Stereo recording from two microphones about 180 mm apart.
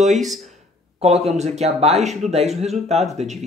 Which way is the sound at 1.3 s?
40° right (ahead or behind).